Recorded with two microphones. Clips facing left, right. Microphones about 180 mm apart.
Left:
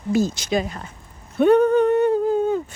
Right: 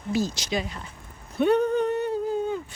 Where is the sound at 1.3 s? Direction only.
50° left (ahead or behind).